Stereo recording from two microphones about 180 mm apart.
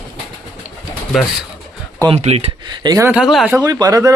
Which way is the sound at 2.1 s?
35° right (ahead or behind).